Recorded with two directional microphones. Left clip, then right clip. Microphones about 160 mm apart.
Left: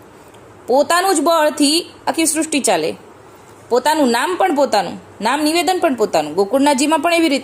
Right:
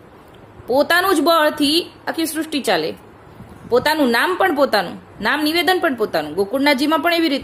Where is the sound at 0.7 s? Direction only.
15° left (ahead or behind).